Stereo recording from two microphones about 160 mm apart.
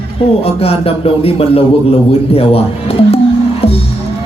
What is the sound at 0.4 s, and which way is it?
Speech, 40° left (ahead or behind).